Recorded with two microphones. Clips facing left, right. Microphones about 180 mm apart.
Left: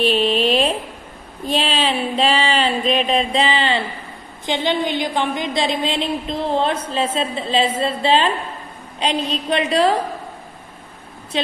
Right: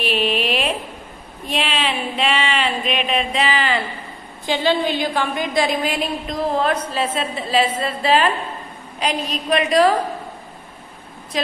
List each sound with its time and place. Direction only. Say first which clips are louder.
0.0 s speech: left 4 dB; 30° left (ahead or behind)
4.5 s a woman's voice: right 1 dB; 20° left (ahead or behind)
11.3 s a woman's voice: left 1 dB; 25° left (ahead or behind)